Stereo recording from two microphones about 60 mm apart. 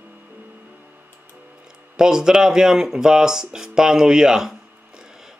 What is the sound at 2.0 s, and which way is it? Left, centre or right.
Speech, centre.